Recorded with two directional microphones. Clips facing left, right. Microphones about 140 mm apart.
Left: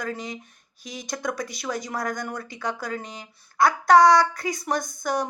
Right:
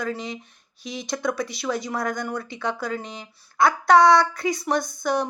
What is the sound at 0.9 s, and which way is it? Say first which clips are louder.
Speech: right 4 dB; 45° left (ahead or behind).